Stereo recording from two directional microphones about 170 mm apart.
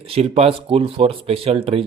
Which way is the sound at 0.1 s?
40° right (ahead or behind).